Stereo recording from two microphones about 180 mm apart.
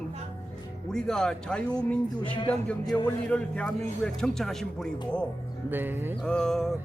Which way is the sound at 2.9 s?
20° left (ahead or behind).